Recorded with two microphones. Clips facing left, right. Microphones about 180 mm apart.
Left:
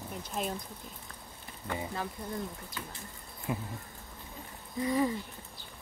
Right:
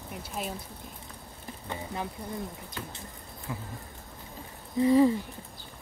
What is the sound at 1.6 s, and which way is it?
Speech, 20° right (ahead or behind).